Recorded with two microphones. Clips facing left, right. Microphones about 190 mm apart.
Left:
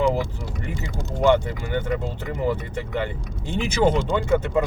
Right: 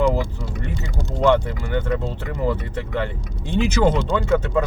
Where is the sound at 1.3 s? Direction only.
15° left (ahead or behind).